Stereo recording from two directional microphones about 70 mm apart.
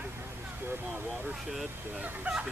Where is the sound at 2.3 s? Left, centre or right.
Centre.